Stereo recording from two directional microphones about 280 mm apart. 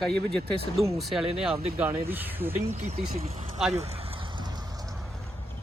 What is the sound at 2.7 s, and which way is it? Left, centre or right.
Speech, right.